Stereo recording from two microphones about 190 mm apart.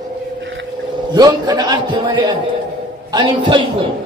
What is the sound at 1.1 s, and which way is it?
A man's voice, 20° right (ahead or behind).